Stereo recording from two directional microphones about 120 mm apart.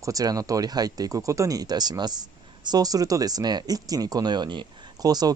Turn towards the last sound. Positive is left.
turn(degrees=-30)  # may be behind; listen again after turning